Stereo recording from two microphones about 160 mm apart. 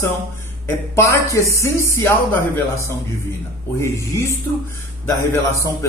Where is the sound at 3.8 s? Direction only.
20° left (ahead or behind).